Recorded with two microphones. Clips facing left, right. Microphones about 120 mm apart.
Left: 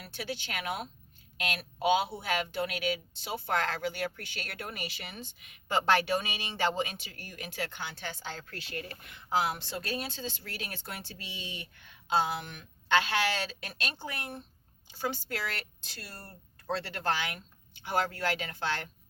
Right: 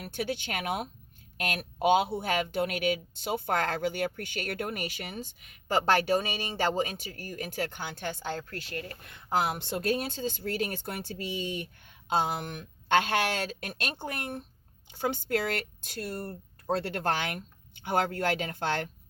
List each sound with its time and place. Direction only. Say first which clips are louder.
0.0 s speech: right 6 dB; 50° right (ahead or behind)